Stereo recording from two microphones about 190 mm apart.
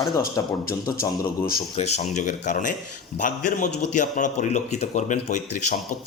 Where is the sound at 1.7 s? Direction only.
35° left (ahead or behind).